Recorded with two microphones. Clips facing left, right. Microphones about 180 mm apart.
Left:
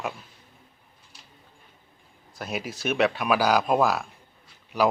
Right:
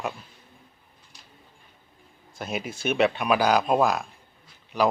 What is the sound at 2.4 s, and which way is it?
Speech, centre (ahead or behind).